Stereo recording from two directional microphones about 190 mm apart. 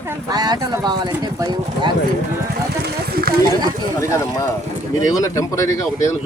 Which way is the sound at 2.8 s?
50° right (ahead or behind).